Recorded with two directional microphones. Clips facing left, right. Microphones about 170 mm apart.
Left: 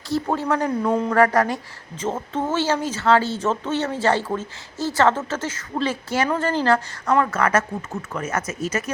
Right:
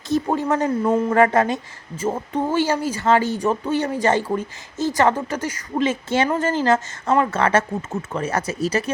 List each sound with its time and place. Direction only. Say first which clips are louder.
0.1 s a woman's voice: right 2 dB; 20° right (ahead or behind)
2.0 s speech: right 2 dB; 10° right (ahead or behind); by 8.8 s 35° right (ahead or behind)